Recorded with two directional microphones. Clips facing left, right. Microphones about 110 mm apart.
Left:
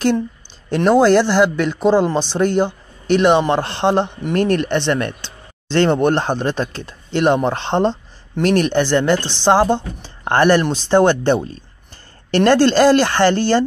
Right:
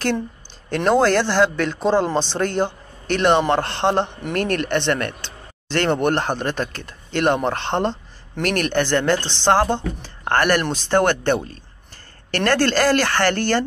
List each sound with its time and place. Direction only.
0.7 s a man's voice: 10° left (ahead or behind)